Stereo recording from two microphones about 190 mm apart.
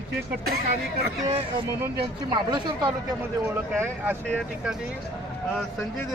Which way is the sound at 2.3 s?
25° right (ahead or behind).